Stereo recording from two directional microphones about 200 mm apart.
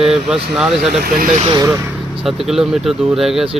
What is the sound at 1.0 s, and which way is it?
Speech, 45° right (ahead or behind).